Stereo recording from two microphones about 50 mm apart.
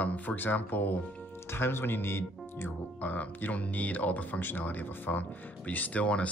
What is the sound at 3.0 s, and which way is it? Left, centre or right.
Speech, left.